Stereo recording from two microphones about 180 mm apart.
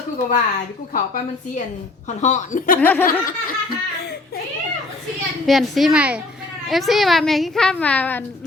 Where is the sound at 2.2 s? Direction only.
40° left (ahead or behind).